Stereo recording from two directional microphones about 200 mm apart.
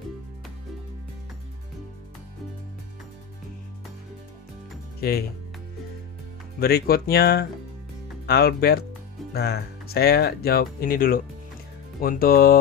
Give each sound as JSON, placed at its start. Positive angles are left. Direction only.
{"t": 6.6, "sound": "speech", "side_deg": 50}